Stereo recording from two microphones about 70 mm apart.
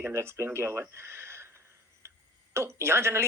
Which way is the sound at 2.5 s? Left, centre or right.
Right.